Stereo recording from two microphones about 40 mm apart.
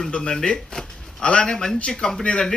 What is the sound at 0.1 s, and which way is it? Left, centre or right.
A man's voice, left.